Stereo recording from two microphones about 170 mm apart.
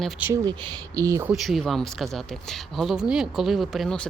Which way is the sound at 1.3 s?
Centre (ahead or behind).